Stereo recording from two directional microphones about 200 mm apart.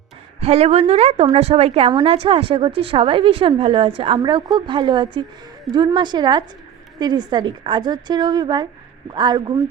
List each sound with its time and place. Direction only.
0.3 s a woman's voice: 30° right (ahead or behind)